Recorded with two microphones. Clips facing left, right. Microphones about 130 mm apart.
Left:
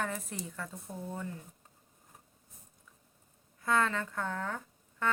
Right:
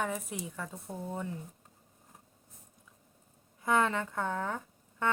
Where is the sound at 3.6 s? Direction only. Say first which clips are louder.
Right 2 dB; 20° right (ahead or behind).